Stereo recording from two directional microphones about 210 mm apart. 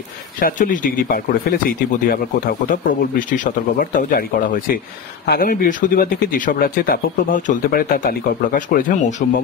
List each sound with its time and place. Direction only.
0.4 s speech: 40° left (ahead or behind)
5.2 s speech: 45° left (ahead or behind)